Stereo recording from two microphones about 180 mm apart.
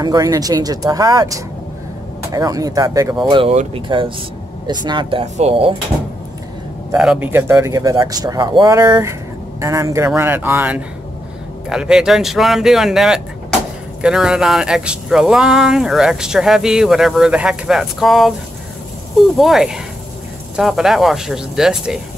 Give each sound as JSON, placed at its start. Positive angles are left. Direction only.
{"t": 0.0, "sound": "speech", "side_deg": -20}
{"t": 7.0, "sound": "speech", "side_deg": -5}